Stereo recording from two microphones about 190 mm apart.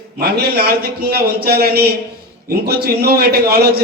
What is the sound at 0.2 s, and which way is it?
A man's voice, 55° right (ahead or behind).